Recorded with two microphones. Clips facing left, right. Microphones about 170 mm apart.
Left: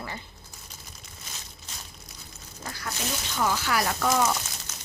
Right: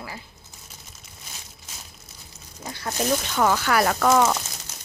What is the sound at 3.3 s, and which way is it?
Speech, 60° right (ahead or behind).